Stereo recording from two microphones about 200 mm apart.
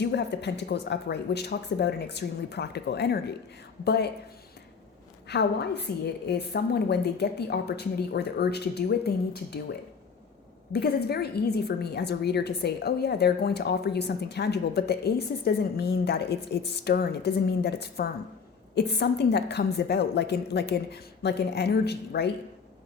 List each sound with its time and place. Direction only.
0.0 s a woman's voice: 55° left (ahead or behind)
5.3 s a woman's voice: 55° left (ahead or behind)
10.7 s a woman's voice: 55° left (ahead or behind)